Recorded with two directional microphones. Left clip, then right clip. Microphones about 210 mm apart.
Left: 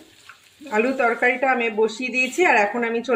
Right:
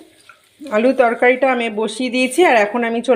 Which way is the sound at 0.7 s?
40° right (ahead or behind).